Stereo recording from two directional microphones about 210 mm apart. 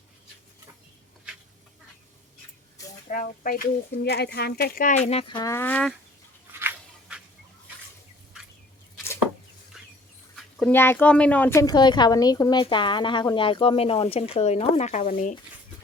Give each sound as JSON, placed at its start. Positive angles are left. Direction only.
{"t": 3.1, "sound": "speech", "side_deg": 40}
{"t": 6.6, "sound": "scissors", "side_deg": -10}
{"t": 9.7, "sound": "a sound", "side_deg": 0}
{"t": 10.3, "sound": "speech", "side_deg": 5}